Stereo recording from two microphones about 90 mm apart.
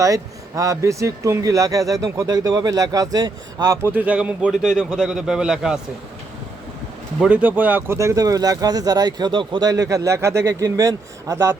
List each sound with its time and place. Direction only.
0.0 s speech: 40° right (ahead or behind)
3.8 s a man's voice: 15° right (ahead or behind)
7.2 s speech: 15° right (ahead or behind); by 9.6 s 65° right (ahead or behind)
9.6 s speech: 45° right (ahead or behind)